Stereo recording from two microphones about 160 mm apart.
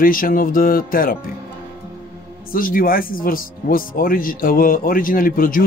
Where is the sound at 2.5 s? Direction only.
60° left (ahead or behind).